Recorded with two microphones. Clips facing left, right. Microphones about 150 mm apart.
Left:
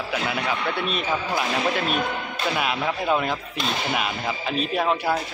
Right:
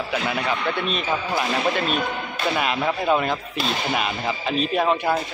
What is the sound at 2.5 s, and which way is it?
Speech, centre (ahead or behind).